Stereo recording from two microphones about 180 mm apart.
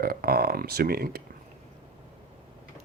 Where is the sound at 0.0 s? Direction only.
55° right (ahead or behind).